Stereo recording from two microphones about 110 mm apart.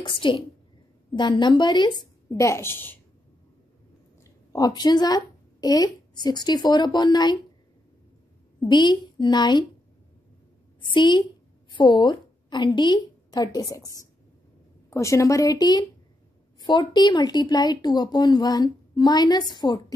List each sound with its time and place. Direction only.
0.0 s a woman's voice: 50° left (ahead or behind)
2.2 s a woman's voice: 25° left (ahead or behind)
4.2 s a woman's voice: 35° left (ahead or behind)
8.5 s a woman's voice: 45° left (ahead or behind)
10.9 s a woman's voice: 45° left (ahead or behind)